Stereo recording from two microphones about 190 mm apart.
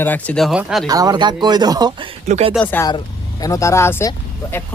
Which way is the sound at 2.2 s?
35° right (ahead or behind).